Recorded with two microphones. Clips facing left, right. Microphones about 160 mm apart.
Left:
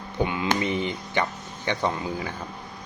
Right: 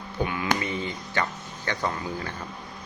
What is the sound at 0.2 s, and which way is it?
Speech, 20° left (ahead or behind).